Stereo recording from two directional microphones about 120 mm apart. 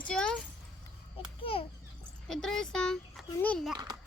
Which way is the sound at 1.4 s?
50° left (ahead or behind).